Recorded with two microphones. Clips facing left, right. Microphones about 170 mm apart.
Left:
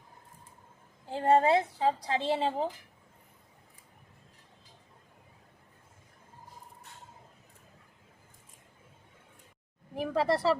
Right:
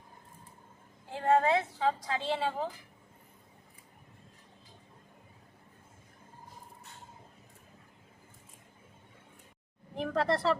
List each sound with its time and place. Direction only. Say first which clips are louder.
1.1 s a woman's voice: left 2 dB; 30° left (ahead or behind)
9.9 s speech: left 2 dB; 10° left (ahead or behind)